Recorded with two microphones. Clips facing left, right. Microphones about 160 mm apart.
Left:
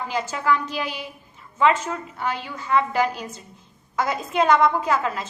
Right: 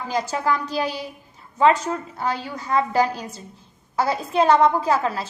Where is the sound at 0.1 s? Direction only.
35° right (ahead or behind).